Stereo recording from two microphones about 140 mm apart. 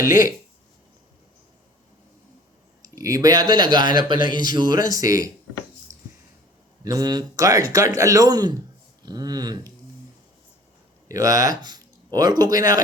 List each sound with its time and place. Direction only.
0.0 s speech: 25° right (ahead or behind)
2.8 s speech: 25° right (ahead or behind)
6.8 s speech: 25° right (ahead or behind)
11.1 s speech: 25° right (ahead or behind)